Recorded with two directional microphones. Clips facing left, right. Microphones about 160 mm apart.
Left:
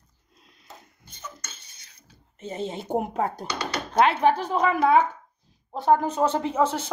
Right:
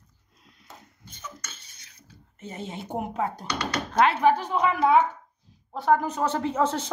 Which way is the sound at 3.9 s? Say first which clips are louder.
Left 1 dB; 20° left (ahead or behind).